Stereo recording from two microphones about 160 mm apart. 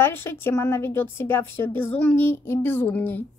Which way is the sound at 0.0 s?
15° left (ahead or behind).